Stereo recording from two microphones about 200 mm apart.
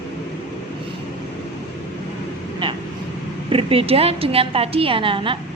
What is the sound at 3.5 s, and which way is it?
A woman's voice, 30° right (ahead or behind).